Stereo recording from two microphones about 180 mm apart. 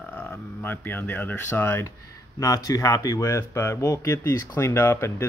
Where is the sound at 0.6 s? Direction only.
10° left (ahead or behind).